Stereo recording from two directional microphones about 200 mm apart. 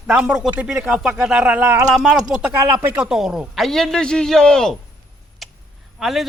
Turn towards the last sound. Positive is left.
turn(degrees=0)  # may be behind; listen again after turning